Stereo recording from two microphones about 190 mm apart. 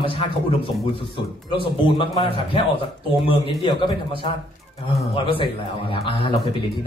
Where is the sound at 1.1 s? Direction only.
25° left (ahead or behind).